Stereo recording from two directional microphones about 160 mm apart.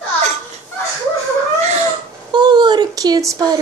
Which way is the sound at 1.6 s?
50° right (ahead or behind).